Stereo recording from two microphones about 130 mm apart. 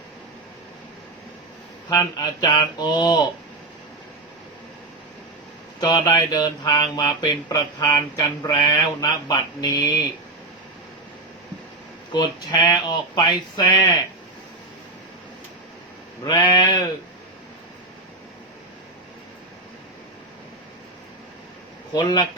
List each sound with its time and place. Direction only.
1.9 s speech: 30° left (ahead or behind)
5.8 s speech: 30° left (ahead or behind)
12.1 s speech: 30° left (ahead or behind)
16.2 s speech: 35° left (ahead or behind)
21.9 s speech: 35° left (ahead or behind)